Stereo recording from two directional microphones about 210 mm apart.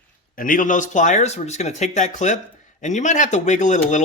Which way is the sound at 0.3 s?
40° left (ahead or behind).